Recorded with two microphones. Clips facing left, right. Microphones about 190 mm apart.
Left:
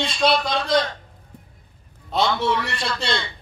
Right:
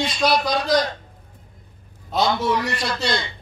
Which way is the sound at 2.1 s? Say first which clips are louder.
Right 1 dB; 25° left (ahead or behind).